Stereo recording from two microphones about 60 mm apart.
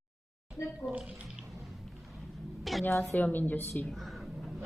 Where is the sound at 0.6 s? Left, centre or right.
Left.